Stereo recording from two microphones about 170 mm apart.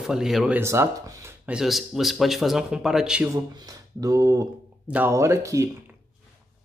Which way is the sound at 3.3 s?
20° right (ahead or behind).